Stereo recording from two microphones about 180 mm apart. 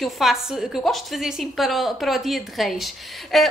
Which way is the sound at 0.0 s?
Centre (ahead or behind).